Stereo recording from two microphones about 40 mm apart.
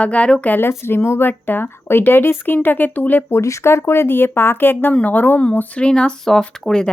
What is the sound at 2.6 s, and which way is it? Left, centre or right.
Speech, left.